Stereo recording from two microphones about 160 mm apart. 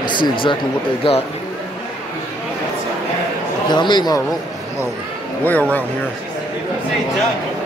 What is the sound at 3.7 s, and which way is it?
Speech, 30° left (ahead or behind).